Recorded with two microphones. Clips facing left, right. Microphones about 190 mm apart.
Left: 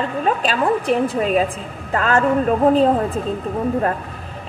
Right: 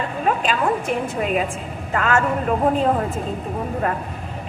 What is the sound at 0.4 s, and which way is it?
A woman's voice, 35° left (ahead or behind).